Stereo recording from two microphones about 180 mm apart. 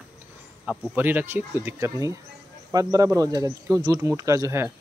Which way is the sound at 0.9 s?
10° right (ahead or behind).